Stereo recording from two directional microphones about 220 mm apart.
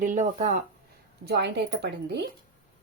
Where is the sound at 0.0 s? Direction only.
35° right (ahead or behind).